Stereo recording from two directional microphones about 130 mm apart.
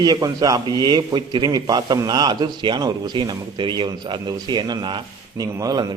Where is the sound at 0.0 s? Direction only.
30° right (ahead or behind).